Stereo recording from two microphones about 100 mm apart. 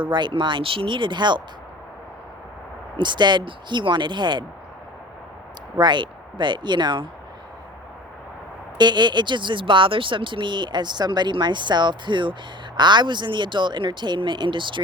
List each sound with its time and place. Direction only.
0.0 s speech: 50° right (ahead or behind)
3.0 s speech: 50° right (ahead or behind)
5.7 s speech: 50° right (ahead or behind)
8.8 s speech: 50° right (ahead or behind)